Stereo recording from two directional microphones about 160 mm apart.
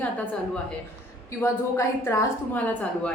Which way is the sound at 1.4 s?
15° left (ahead or behind).